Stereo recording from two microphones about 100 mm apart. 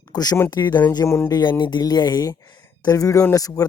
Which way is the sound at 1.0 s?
25° left (ahead or behind).